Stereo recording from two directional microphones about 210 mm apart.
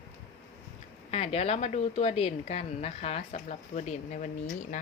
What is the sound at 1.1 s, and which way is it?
A woman's voice, 30° left (ahead or behind).